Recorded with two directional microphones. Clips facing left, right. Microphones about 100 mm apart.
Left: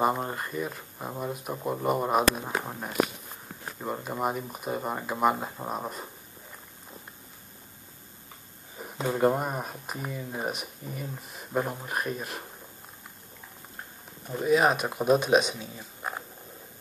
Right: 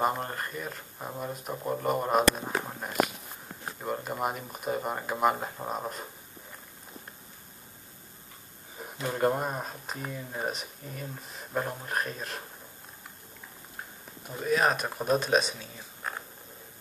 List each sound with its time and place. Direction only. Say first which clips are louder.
0.2 s speech: left 3 dB; 10° left (ahead or behind)
9.1 s speech: left 2 dB; 5° left (ahead or behind)
14.4 s speech: left 3 dB; 15° left (ahead or behind)
16.0 s a sound: left 2 dB; 15° left (ahead or behind)